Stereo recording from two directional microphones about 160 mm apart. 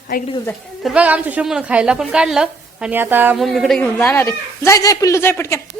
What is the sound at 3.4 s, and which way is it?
Speech, centre (ahead or behind).